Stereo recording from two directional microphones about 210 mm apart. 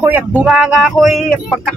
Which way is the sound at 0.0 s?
10° right (ahead or behind).